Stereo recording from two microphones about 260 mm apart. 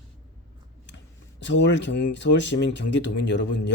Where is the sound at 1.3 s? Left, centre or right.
Left.